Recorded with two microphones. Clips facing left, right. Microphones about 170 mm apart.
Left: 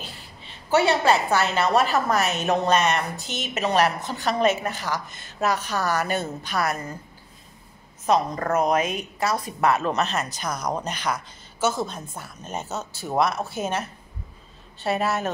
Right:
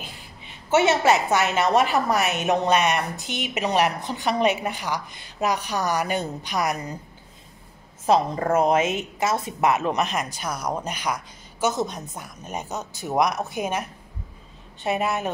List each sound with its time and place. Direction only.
0.0 s a woman's voice: 10° right (ahead or behind)
8.0 s a woman's voice: 30° right (ahead or behind)